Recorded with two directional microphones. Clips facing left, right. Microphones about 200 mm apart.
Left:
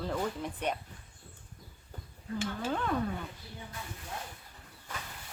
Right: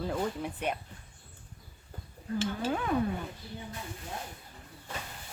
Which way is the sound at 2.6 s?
10° right (ahead or behind).